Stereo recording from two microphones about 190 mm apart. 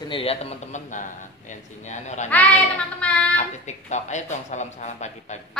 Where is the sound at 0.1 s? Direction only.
30° left (ahead or behind).